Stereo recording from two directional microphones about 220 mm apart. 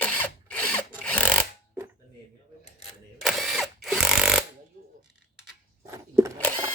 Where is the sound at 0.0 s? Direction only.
5° left (ahead or behind).